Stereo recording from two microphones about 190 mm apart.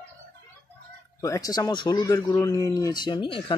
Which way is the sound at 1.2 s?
20° left (ahead or behind).